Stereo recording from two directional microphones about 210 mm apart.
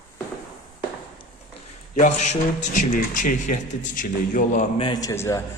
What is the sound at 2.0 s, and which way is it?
A man's voice, 35° left (ahead or behind).